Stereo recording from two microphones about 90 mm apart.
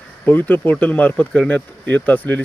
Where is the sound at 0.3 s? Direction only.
20° left (ahead or behind).